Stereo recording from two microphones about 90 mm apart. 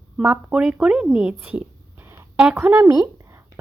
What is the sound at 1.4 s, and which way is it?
Whispering, 20° right (ahead or behind).